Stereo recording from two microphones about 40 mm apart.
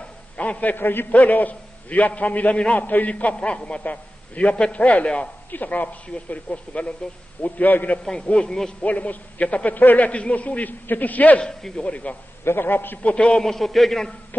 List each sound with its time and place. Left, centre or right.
0.0 s a sound: left
0.7 s a man's voice: left
1.1 s a man's voice: left
5.5 s a man's voice: left
7.4 s a man's voice: left
8.0 s a man's voice: centre
8.8 s a man's voice: left
9.8 s a man's voice: left
10.0 s a man's voice: left
11.4 s a man's voice: centre
11.8 s a man's voice: left
12.4 s a man's voice: left
13.0 s a man's voice: left
13.4 s a man's voice: centre